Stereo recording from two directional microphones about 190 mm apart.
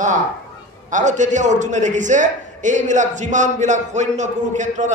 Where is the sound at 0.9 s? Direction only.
40° right (ahead or behind).